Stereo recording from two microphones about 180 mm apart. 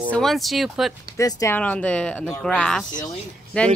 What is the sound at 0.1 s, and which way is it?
Speech, centre (ahead or behind).